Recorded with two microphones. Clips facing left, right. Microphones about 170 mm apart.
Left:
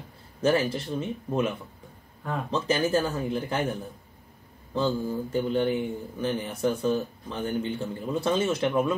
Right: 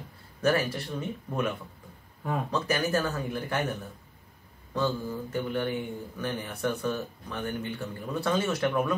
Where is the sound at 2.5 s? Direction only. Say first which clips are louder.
Left 4 dB; 25° left (ahead or behind).